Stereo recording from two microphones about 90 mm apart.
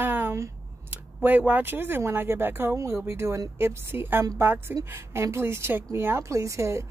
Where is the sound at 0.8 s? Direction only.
20° right (ahead or behind).